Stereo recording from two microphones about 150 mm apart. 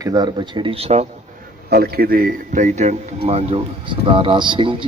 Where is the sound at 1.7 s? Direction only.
90° right.